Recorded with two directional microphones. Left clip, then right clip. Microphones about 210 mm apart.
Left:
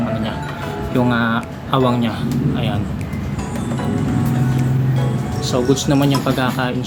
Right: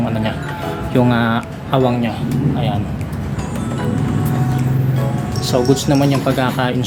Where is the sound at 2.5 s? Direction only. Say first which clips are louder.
Right 2 dB; 10° left (ahead or behind).